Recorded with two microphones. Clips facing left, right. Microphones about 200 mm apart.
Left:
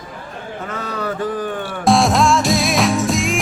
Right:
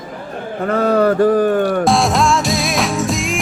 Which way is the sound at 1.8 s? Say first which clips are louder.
Even; centre (ahead or behind).